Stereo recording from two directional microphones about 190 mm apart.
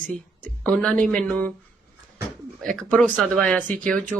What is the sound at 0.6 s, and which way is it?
Speech, 5° left (ahead or behind).